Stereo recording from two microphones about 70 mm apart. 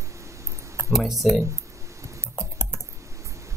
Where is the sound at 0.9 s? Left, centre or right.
Centre.